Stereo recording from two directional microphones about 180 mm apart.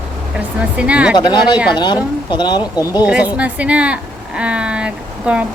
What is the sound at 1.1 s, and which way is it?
Speech, 25° left (ahead or behind).